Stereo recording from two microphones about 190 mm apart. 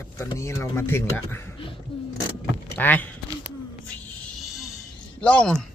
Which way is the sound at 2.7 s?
10° left (ahead or behind).